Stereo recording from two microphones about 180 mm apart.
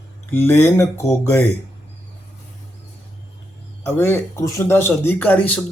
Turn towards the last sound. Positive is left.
turn(degrees=10)  # may be behind; listen again after turning